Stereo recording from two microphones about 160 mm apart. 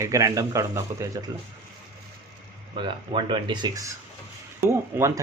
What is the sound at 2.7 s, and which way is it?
Speech, 30° right (ahead or behind).